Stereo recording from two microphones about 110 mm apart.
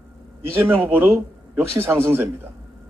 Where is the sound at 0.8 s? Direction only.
20° right (ahead or behind).